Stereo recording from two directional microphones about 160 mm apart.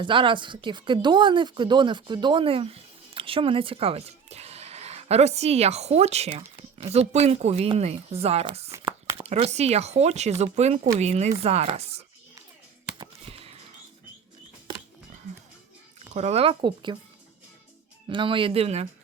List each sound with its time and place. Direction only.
0.0 s a woman's voice: 30° right (ahead or behind)
8.9 s a sound: 15° right (ahead or behind)
9.2 s a woman's voice: 40° right (ahead or behind)
13.0 s a sound: 35° right (ahead or behind)
16.1 s a woman's voice: 40° right (ahead or behind)
18.1 s a woman's voice: 30° right (ahead or behind)